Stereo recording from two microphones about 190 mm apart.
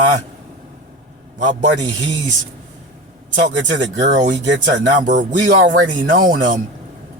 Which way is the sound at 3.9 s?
40° right (ahead or behind).